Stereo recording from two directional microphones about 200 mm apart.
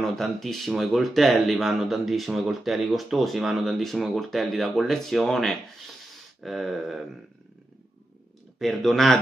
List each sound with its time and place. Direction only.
0.0 s speech: centre (ahead or behind)
8.5 s speech: centre (ahead or behind)